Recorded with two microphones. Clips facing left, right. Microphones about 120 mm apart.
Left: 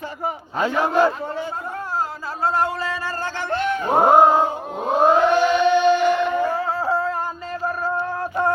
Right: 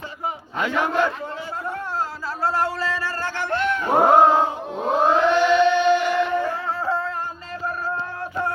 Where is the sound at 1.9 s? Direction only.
20° left (ahead or behind).